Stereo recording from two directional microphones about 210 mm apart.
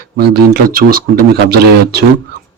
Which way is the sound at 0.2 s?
45° right (ahead or behind).